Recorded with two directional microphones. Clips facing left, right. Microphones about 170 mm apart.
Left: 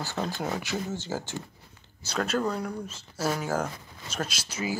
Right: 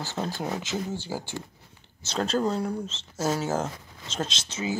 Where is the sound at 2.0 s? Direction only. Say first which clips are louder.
Right 2 dB; 30° right (ahead or behind).